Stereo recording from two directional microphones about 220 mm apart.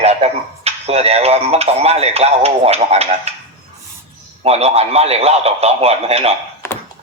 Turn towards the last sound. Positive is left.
turn(degrees=10)  # may be behind; listen again after turning